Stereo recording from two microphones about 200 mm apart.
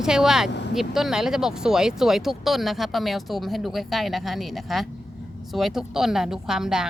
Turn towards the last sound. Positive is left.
turn(degrees=-5)  # may be behind; listen again after turning